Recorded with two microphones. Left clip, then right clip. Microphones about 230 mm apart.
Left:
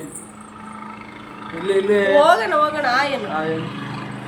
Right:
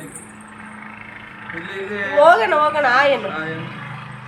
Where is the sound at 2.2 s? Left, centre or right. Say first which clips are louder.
Right 3 dB; centre.